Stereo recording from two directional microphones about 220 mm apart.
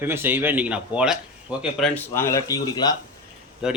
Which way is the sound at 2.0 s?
10° left (ahead or behind).